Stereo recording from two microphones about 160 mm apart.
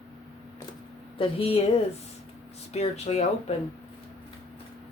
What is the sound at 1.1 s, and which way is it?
Speech, 35° left (ahead or behind).